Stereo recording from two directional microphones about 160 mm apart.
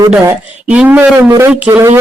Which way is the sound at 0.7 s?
10° right (ahead or behind).